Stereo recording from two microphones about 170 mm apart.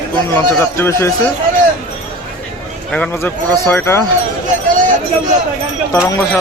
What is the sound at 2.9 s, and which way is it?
A man's voice, 10° left (ahead or behind).